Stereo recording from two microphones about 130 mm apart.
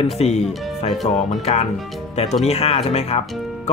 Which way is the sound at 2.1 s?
55° left (ahead or behind).